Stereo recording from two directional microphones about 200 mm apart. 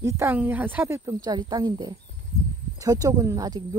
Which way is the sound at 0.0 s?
10° right (ahead or behind).